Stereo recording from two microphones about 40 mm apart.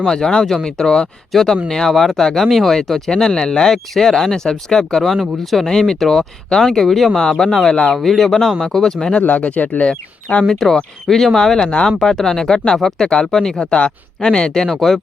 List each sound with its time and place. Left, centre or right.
0.0 s speech: centre
3.1 s speech: centre
5.0 s speech: centre
7.2 s speech: centre
7.9 s speech: centre
9.2 s speech: left
10.4 s speech: centre
12.0 s speech: centre
14.6 s speech: centre